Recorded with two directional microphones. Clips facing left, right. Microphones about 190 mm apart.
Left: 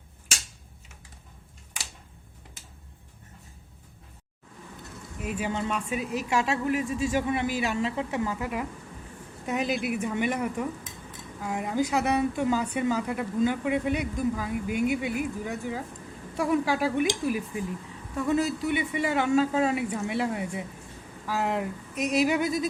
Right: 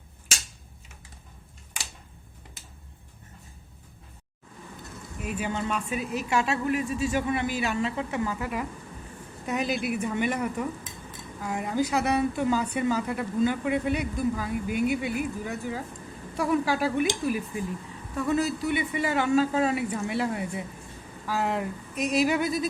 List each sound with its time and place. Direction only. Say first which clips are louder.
5.2 s speech: even; 20° left (ahead or behind)
18.6 s speech: even; 15° left (ahead or behind)